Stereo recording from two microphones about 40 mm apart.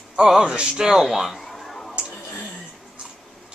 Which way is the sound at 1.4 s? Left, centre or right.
Centre.